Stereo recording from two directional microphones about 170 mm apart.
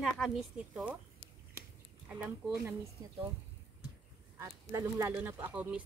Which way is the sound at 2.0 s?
10° right (ahead or behind).